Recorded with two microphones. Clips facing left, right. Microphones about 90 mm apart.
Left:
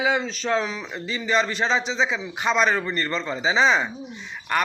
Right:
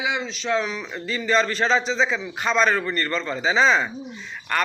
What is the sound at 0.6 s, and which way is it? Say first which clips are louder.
A man's voice: right 1 dB; 30° left (ahead or behind).